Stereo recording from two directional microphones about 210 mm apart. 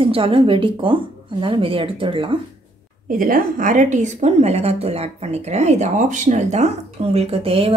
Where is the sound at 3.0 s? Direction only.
40° right (ahead or behind).